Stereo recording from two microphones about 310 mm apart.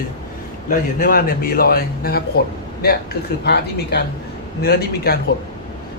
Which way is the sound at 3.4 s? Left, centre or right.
Left.